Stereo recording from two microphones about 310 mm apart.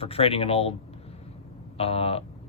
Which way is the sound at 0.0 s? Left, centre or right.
Centre.